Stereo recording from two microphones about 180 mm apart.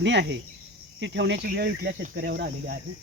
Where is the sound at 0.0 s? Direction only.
80° right.